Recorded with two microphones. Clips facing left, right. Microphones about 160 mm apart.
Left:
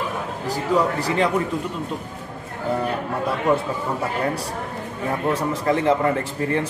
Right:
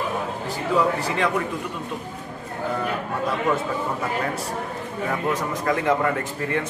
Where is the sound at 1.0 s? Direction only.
35° left (ahead or behind).